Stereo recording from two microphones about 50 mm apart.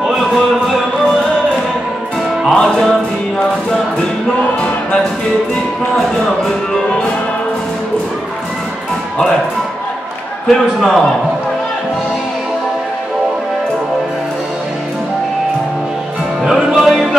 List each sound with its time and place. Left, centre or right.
0.0 s a sound: centre
2.4 s music: centre
4.6 s music: centre
5.9 s music: centre
10.5 s speech: centre
16.7 s music: centre